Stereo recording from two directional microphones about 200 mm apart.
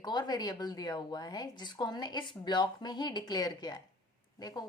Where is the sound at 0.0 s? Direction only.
20° left (ahead or behind).